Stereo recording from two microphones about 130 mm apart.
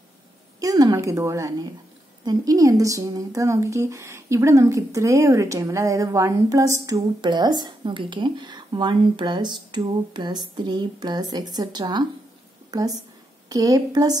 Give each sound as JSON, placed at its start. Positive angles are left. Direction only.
{"t": 0.6, "sound": "a woman's voice", "side_deg": -30}
{"t": 7.0, "sound": "speech", "side_deg": -35}